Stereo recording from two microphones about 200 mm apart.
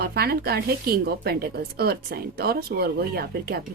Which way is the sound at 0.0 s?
50° right (ahead or behind).